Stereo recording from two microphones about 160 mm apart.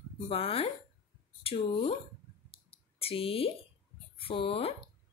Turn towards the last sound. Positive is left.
turn(degrees=35)  # may be behind; listen again after turning